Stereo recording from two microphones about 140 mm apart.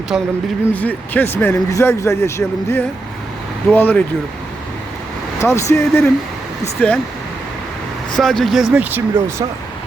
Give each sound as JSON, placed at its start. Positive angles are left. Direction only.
{"t": 0.1, "sound": "speech", "side_deg": -5}
{"t": 0.7, "sound": "speech", "side_deg": 10}
{"t": 5.4, "sound": "speech", "side_deg": 20}
{"t": 8.1, "sound": "speech", "side_deg": 5}
{"t": 8.7, "sound": "speech", "side_deg": -15}